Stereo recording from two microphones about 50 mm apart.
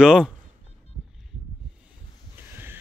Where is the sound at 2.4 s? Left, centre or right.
Right.